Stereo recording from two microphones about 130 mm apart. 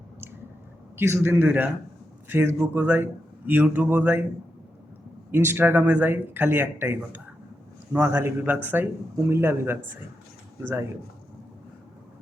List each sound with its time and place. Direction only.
0.9 s speech: 20° right (ahead or behind)
5.3 s speech: 15° right (ahead or behind)